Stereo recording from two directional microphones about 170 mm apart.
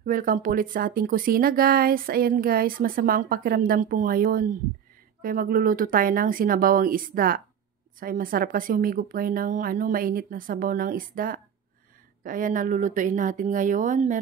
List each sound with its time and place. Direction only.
0.0 s speech: 55° right (ahead or behind)